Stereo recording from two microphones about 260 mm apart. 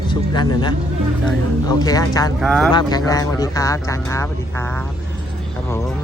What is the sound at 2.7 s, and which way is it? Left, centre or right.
Speech, centre.